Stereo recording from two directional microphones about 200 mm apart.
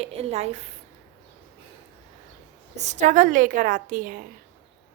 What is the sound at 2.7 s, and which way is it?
A woman's voice, 35° right (ahead or behind).